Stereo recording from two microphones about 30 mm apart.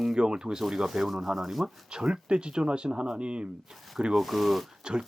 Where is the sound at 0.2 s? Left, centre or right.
Right.